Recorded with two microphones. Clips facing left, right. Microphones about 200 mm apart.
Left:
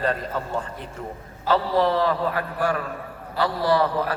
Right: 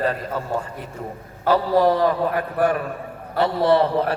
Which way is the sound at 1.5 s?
55° right (ahead or behind).